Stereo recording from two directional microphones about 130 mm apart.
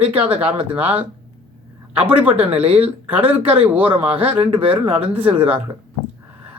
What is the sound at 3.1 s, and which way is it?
Speech, 10° right (ahead or behind).